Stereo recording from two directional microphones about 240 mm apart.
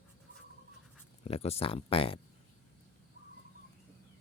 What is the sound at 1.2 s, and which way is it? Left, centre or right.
Speech, left.